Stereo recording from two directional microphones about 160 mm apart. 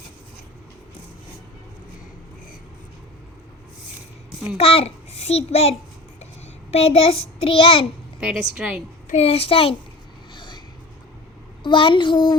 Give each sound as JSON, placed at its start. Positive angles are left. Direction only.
{"t": 4.5, "sound": "a child's voice", "side_deg": 35}
{"t": 8.2, "sound": "a woman's voice", "side_deg": -5}
{"t": 9.0, "sound": "a child's voice", "side_deg": 40}
{"t": 10.3, "sound": "vehicle", "side_deg": 30}
{"t": 11.6, "sound": "a child's voice", "side_deg": 30}